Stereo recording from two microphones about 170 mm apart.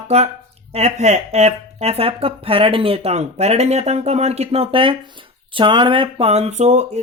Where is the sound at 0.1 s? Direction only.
40° right (ahead or behind).